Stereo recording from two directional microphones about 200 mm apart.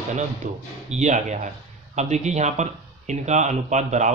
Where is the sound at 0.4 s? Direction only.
40° right (ahead or behind).